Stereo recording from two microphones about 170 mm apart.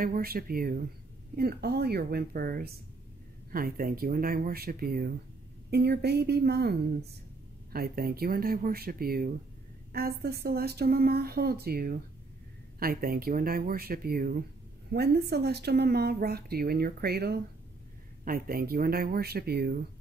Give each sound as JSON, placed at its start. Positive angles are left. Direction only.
{"t": 0.0, "sound": "a woman's voice", "side_deg": -60}
{"t": 14.9, "sound": "speech", "side_deg": -70}
{"t": 18.2, "sound": "a woman's voice", "side_deg": -55}